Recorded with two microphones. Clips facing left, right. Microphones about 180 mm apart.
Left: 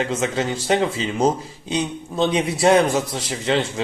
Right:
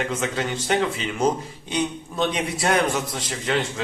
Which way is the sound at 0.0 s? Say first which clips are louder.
Left 3 dB; 30° left (ahead or behind).